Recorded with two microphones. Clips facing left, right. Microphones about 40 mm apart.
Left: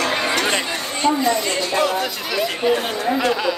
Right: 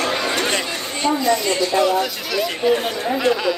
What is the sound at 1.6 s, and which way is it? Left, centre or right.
Speech, left.